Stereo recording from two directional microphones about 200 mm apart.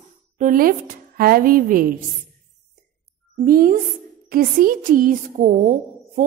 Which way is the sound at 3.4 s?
45° right (ahead or behind).